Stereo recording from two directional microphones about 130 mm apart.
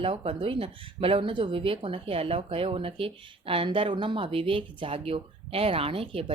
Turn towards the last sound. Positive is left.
turn(degrees=-45)  # may be behind; listen again after turning